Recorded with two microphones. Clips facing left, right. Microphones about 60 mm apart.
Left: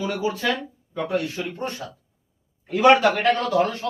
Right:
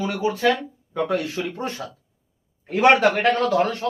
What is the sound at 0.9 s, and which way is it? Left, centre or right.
Speech, right.